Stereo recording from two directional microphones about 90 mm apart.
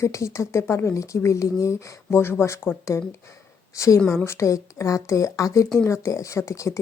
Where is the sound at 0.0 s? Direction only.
35° left (ahead or behind).